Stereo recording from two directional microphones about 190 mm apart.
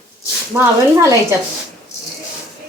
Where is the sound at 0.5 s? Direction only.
15° right (ahead or behind).